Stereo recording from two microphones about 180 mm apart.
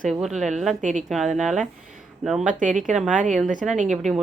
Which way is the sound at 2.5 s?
45° right (ahead or behind).